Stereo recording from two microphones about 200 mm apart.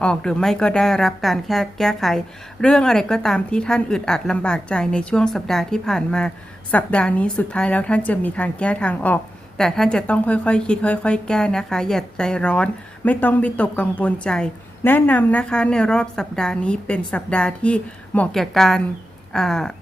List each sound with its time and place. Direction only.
0.0 s a woman's voice: 5° left (ahead or behind)